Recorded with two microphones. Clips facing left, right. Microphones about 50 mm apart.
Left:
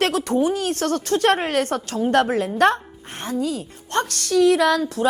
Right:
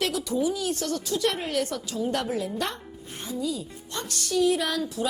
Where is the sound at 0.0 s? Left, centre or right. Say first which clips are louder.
Left 6 dB; left.